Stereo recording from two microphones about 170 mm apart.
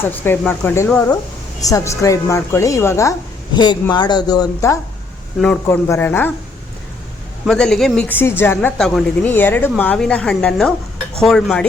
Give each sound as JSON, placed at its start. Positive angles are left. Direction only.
{"t": 0.0, "sound": "a woman's voice", "side_deg": 10}
{"t": 7.4, "sound": "a woman's voice", "side_deg": 5}